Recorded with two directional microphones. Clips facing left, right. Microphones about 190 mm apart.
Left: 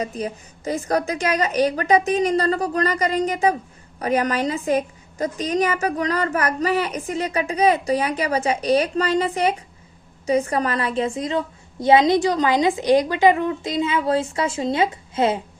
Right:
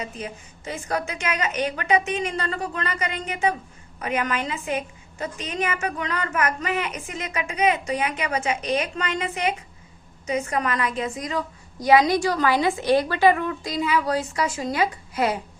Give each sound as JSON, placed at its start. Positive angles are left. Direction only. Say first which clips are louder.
{"t": 0.0, "sound": "a woman's voice", "louder": "left 6 dB", "side_deg": 40}